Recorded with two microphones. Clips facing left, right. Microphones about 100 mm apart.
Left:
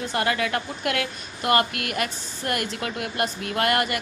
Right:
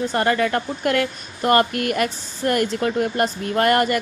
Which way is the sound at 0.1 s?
40° right (ahead or behind).